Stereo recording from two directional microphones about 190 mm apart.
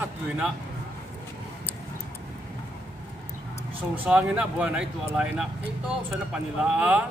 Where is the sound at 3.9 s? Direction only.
5° right (ahead or behind).